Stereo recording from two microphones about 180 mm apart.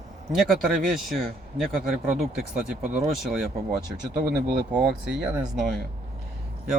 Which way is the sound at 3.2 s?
Centre (ahead or behind).